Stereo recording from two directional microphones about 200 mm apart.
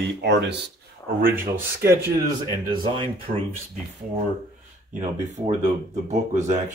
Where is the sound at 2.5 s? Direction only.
25° right (ahead or behind).